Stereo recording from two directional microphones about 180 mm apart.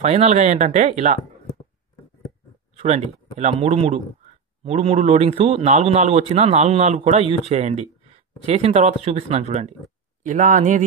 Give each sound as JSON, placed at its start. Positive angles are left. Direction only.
{"t": 0.0, "sound": "a man's voice", "side_deg": -35}
{"t": 3.3, "sound": "a man's voice", "side_deg": -35}